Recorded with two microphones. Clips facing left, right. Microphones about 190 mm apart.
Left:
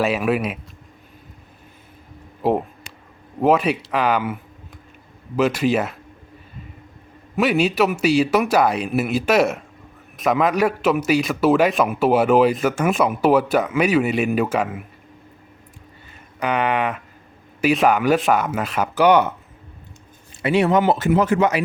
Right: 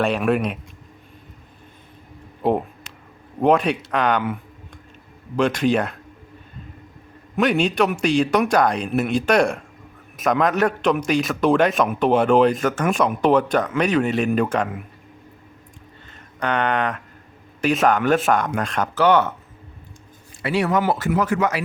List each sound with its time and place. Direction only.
0.0 s a man's voice: 5° left (ahead or behind)
2.4 s a man's voice: centre (ahead or behind)
5.4 s a man's voice: 5° left (ahead or behind)
7.3 s a man's voice: 5° left (ahead or behind)
16.4 s speech: 10° left (ahead or behind)
20.4 s speech: 20° left (ahead or behind)